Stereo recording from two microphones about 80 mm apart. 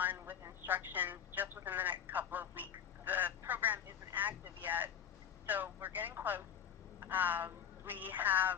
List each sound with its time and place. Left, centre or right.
0.0 s telephone: right
0.6 s a sound: right
5.5 s telephone: right
7.0 s a woman's voice: right